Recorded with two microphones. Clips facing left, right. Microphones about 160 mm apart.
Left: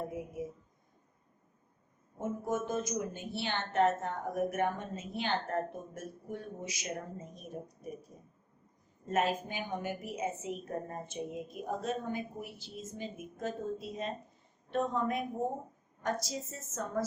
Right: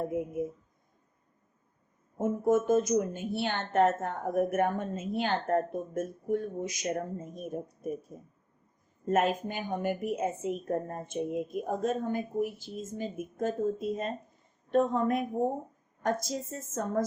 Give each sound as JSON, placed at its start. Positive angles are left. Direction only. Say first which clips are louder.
{"t": 2.1, "sound": "a woman's voice", "louder": "right 8 dB", "side_deg": -50}
{"t": 9.0, "sound": "a woman's voice", "louder": "right 4 dB", "side_deg": -50}
{"t": 16.2, "sound": "a woman's voice", "louder": "right 5 dB", "side_deg": -50}